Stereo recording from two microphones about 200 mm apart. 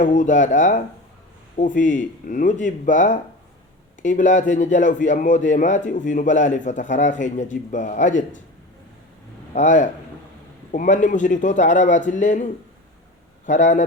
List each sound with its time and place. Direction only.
0.0 s a man's voice: 40° left (ahead or behind)
9.5 s a man's voice: 40° left (ahead or behind)